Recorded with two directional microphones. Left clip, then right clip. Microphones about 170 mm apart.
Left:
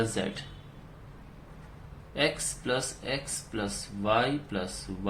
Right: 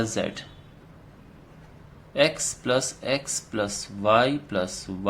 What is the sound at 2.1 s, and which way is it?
Speech, 40° right (ahead or behind).